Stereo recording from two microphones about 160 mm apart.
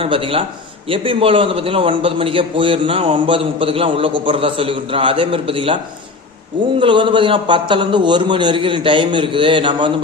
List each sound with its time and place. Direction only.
0.0 s a man's voice: 35° right (ahead or behind)